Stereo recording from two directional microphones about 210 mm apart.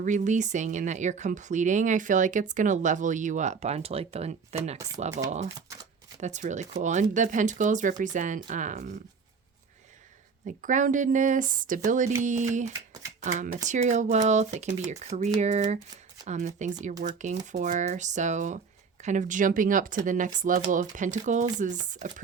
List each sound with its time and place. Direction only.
0.0 s speech: 35° right (ahead or behind)
6.1 s speech: 35° right (ahead or behind)
10.4 s speech: 40° right (ahead or behind)